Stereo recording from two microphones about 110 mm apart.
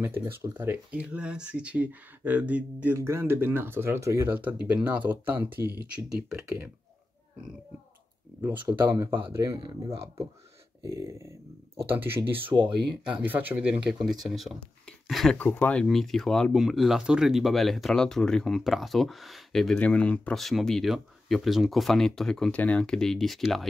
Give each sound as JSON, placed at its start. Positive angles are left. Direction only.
{"t": 0.0, "sound": "speech", "side_deg": -20}
{"t": 8.5, "sound": "speech", "side_deg": -20}
{"t": 9.2, "sound": "speech", "side_deg": -45}
{"t": 10.9, "sound": "speech", "side_deg": -30}
{"t": 15.3, "sound": "speech", "side_deg": 20}
{"t": 15.8, "sound": "speech", "side_deg": 5}